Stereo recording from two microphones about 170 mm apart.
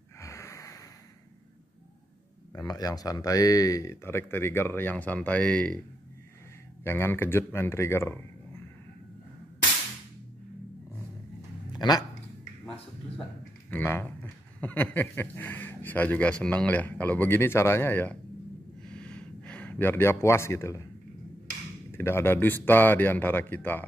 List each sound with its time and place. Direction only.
0.2 s snort: 15° left (ahead or behind)
2.5 s speech: 20° left (ahead or behind); by 5.8 s 5° left (ahead or behind)
6.8 s speech: 15° left (ahead or behind)
11.7 s a sound: 25° left (ahead or behind)
13.7 s speech: 10° left (ahead or behind)
18.8 s a sound: 5° left (ahead or behind)
21.9 s speech: 15° left (ahead or behind)